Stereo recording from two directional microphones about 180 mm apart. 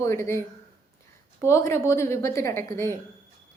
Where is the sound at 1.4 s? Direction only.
15° left (ahead or behind).